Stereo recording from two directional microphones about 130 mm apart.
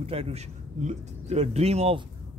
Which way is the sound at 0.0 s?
45° right (ahead or behind).